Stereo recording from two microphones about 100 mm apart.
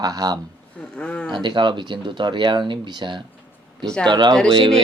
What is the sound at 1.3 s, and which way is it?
Speech, 50° right (ahead or behind).